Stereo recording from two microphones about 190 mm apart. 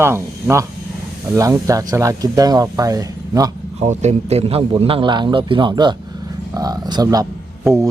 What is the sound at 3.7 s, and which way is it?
A man's voice, 35° right (ahead or behind).